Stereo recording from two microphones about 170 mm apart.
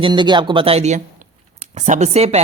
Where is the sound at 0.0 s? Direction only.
25° right (ahead or behind).